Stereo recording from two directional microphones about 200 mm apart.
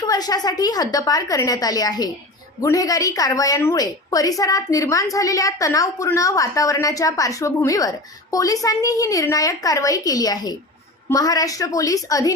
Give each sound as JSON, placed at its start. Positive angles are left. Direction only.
{"t": 0.0, "sound": "a woman's voice", "side_deg": 20}